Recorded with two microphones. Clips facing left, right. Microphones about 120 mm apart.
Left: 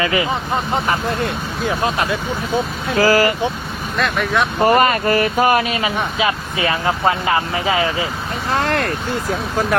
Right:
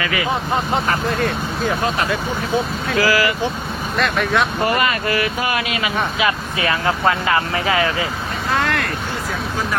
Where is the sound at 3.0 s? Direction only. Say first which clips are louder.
Left 4 dB; 40° left (ahead or behind).